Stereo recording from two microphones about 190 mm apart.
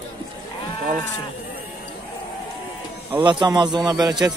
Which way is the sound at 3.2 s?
20° right (ahead or behind).